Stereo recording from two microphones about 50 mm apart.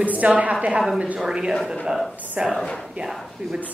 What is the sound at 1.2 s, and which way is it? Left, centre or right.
Speech, centre.